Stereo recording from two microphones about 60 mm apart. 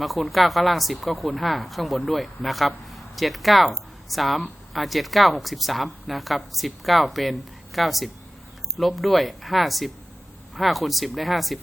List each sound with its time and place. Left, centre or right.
0.0 s speech: centre